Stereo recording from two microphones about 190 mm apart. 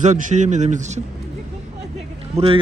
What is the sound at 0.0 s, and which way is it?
Speech, 40° right (ahead or behind).